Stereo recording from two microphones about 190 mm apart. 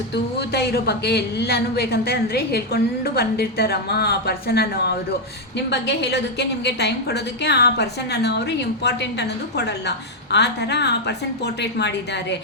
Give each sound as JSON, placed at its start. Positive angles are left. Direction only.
{"t": 0.3, "sound": "a woman's voice", "side_deg": 55}
{"t": 10.3, "sound": "a woman's voice", "side_deg": 60}